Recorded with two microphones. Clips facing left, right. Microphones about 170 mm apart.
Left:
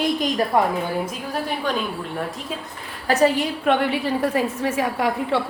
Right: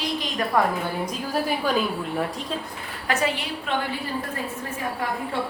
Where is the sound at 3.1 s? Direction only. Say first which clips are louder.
Left 7 dB; 40° left (ahead or behind).